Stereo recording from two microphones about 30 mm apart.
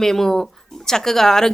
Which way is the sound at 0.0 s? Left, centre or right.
Centre.